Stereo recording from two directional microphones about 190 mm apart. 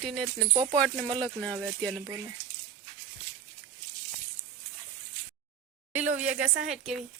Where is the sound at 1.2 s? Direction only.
5° left (ahead or behind).